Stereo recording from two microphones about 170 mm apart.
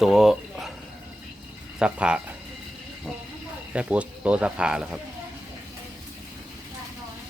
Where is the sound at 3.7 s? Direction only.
5° right (ahead or behind).